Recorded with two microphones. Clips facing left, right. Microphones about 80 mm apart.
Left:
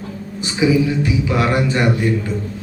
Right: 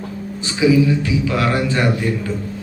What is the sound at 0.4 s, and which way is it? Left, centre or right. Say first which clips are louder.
Speech: right 1 dB; left.